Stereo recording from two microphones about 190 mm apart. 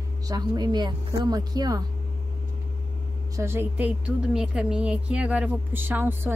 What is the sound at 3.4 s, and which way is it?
Speech, 10° right (ahead or behind).